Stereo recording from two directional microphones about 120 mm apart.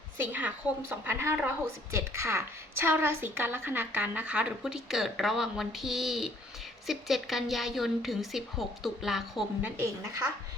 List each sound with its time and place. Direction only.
0.2 s a woman's voice: 15° right (ahead or behind)
9.6 s speech: 20° right (ahead or behind)